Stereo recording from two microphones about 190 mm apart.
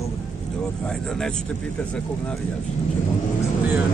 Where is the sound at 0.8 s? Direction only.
5° left (ahead or behind).